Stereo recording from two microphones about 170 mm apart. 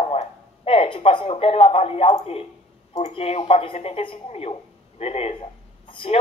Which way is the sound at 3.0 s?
40° left (ahead or behind).